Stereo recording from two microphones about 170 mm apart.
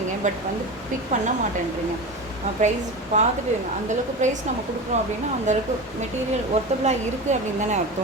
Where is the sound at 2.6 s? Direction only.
45° right (ahead or behind).